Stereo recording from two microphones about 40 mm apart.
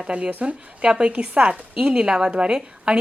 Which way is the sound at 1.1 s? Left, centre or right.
Right.